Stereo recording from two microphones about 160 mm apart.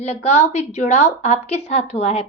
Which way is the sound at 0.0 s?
45° left (ahead or behind).